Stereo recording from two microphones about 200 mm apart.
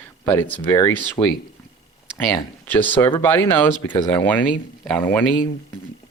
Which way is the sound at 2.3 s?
10° left (ahead or behind).